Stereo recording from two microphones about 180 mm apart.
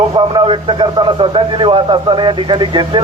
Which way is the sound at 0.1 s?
30° right (ahead or behind).